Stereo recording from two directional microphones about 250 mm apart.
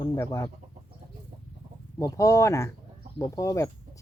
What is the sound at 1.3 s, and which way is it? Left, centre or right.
Chicken, right.